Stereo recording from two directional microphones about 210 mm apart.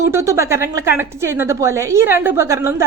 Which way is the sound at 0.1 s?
15° right (ahead or behind).